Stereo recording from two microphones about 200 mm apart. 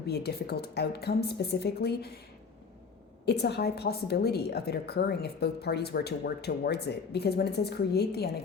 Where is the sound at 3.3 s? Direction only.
55° left (ahead or behind).